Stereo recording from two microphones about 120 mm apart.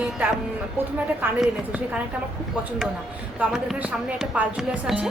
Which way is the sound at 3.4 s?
10° right (ahead or behind).